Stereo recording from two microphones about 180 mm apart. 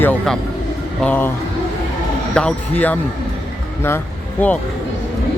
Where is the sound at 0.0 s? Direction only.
10° left (ahead or behind).